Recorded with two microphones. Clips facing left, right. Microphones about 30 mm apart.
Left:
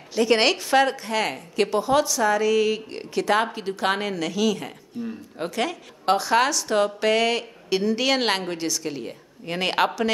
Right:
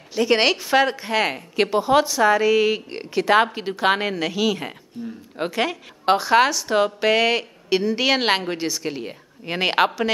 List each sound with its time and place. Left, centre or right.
0.1 s a woman's voice: centre